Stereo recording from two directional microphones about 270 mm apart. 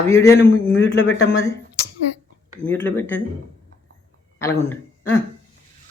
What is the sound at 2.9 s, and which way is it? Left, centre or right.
Speech, centre.